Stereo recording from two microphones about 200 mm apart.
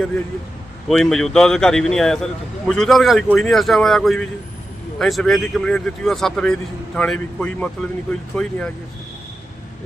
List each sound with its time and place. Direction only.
0.9 s speech: centre (ahead or behind)